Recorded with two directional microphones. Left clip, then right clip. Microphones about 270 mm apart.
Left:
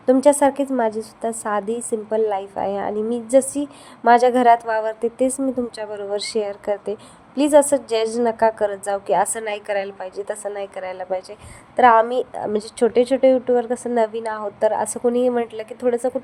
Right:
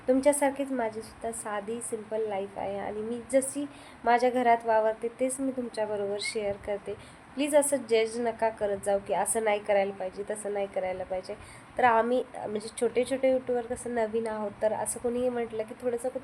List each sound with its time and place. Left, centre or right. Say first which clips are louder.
0.0 s a woman's voice: left 10 dB; left